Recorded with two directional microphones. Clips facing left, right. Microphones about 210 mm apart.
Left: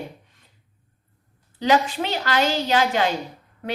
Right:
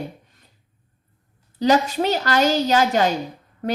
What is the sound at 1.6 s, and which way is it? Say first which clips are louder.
A woman's voice: right 3 dB; 40° right (ahead or behind).